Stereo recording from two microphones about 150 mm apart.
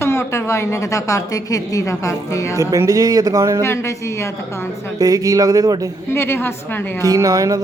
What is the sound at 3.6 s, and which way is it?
A woman's voice, 20° left (ahead or behind).